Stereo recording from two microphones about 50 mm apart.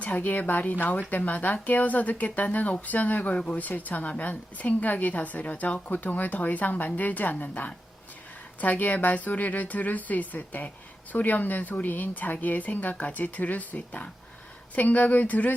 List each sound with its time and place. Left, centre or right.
0.0 s speech: left
3.3 s speech: left
3.6 s speech: left